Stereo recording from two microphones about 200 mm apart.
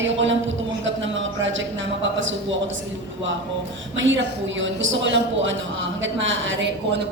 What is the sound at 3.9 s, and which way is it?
A woman's voice, 70° right (ahead or behind).